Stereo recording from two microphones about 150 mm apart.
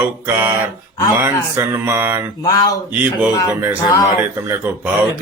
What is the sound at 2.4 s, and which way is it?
Speech, 25° left (ahead or behind).